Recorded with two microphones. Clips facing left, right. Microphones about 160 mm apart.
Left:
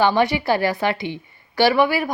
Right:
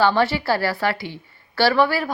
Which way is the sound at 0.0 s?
15° left (ahead or behind).